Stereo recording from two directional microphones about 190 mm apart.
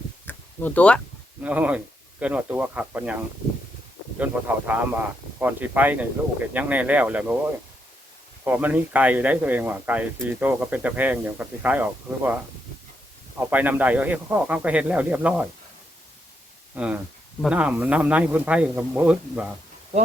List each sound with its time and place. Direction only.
0.3 s a sound: 10° left (ahead or behind)
1.5 s speech: 5° right (ahead or behind)
8.4 s speech: 10° right (ahead or behind)
13.4 s speech: 10° right (ahead or behind)
16.7 s speech: 10° right (ahead or behind)